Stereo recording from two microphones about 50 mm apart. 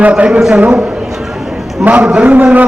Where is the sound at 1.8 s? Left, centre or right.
Right.